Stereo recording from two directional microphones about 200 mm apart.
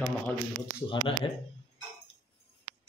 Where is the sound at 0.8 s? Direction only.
25° left (ahead or behind).